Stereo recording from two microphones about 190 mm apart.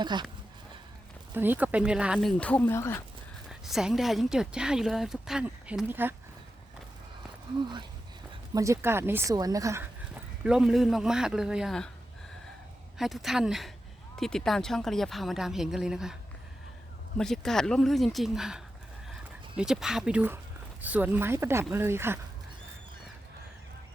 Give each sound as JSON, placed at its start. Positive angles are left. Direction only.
{"t": 0.0, "sound": "speech", "side_deg": -25}
{"t": 1.3, "sound": "speech", "side_deg": -10}
{"t": 2.4, "sound": "speech", "side_deg": 10}
{"t": 3.5, "sound": "speech", "side_deg": -5}
{"t": 8.5, "sound": "speech", "side_deg": -15}
{"t": 10.4, "sound": "speech", "side_deg": -5}
{"t": 13.0, "sound": "speech", "side_deg": 0}
{"t": 17.2, "sound": "speech", "side_deg": 0}